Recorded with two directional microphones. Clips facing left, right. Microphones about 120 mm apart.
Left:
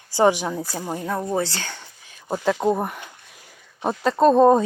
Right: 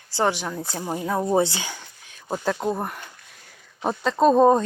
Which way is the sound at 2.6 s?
10° left (ahead or behind).